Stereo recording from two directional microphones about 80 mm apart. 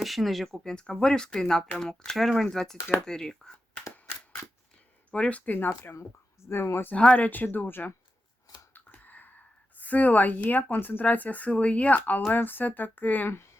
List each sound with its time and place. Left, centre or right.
0.0 s speech: centre
5.1 s speech: centre
6.9 s speech: centre
8.7 s a sound: left
9.7 s speech: centre